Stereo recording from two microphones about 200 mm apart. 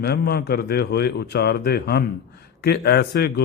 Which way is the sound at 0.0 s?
50° left (ahead or behind).